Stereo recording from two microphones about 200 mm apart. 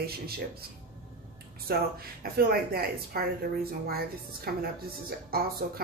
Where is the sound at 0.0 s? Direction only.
50° right (ahead or behind).